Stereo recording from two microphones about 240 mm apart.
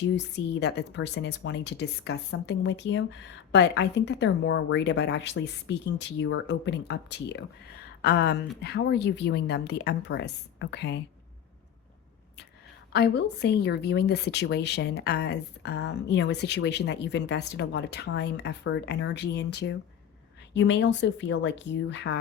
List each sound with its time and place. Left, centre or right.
0.1 s a woman's voice: left
12.9 s a woman's voice: left